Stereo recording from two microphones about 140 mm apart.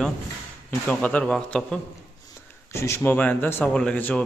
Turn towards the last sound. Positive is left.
turn(degrees=10)  # may be behind; listen again after turning